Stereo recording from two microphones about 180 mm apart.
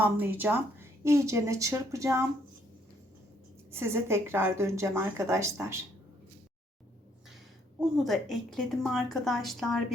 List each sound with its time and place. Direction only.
0.0 s a woman's voice: 10° right (ahead or behind)
3.7 s a woman's voice: 15° right (ahead or behind)
7.9 s a woman's voice: centre (ahead or behind)